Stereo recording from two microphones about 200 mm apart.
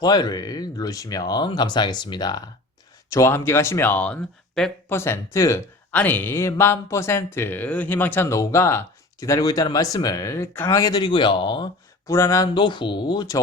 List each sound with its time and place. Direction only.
0.0 s speech: 20° left (ahead or behind)